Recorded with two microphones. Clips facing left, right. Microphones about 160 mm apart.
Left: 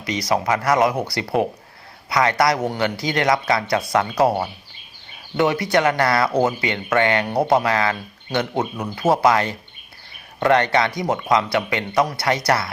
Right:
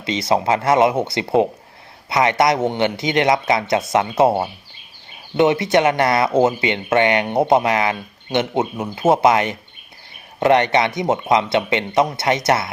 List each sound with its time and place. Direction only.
0.0 s speech: 25° right (ahead or behind)